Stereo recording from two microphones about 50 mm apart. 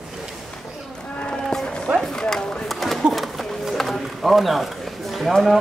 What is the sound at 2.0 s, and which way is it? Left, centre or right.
Speech, centre.